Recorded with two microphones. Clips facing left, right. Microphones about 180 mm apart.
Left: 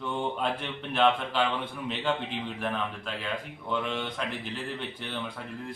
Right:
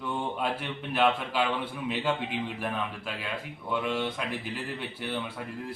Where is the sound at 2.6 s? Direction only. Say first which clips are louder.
Left 1 dB; 5° right (ahead or behind).